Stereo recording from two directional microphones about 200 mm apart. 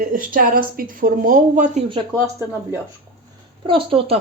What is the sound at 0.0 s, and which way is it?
Speech, 45° right (ahead or behind).